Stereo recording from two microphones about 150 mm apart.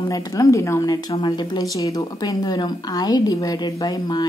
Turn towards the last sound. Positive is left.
turn(degrees=25)  # may be behind; listen again after turning